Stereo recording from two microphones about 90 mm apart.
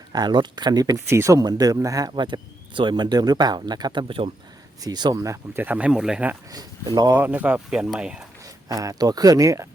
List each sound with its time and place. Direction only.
0.1 s speech: 50° right (ahead or behind)
1.1 s speech: 35° right (ahead or behind)
2.2 s speech: 60° right (ahead or behind)
5.1 s speech: 35° right (ahead or behind)
5.5 s speech: 15° right (ahead or behind)
6.5 s speech: 45° right (ahead or behind)
7.1 s speech: 20° right (ahead or behind)
7.7 s speech: 5° right (ahead or behind)
8.7 s speech: 40° right (ahead or behind)